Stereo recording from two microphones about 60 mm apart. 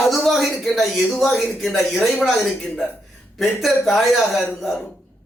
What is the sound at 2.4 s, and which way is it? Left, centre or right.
Speech, centre.